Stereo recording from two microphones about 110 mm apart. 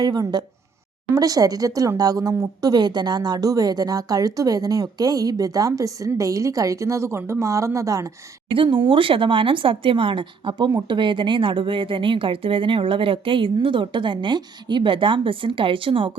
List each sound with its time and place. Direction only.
0.0 s speech: 40° right (ahead or behind)
8.4 s a woman's voice: 50° right (ahead or behind)